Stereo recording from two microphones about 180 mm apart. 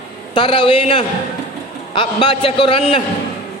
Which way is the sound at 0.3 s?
30° left (ahead or behind).